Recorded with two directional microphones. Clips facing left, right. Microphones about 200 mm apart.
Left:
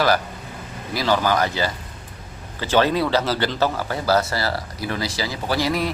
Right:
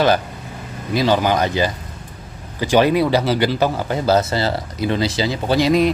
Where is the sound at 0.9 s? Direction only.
20° right (ahead or behind).